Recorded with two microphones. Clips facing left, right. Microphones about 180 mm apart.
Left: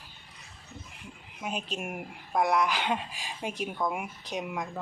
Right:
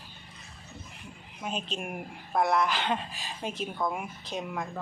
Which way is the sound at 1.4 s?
10° left (ahead or behind).